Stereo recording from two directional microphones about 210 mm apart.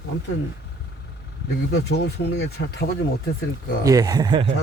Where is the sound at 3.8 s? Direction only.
15° right (ahead or behind).